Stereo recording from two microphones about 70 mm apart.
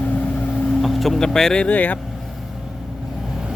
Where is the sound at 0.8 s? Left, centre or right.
Centre.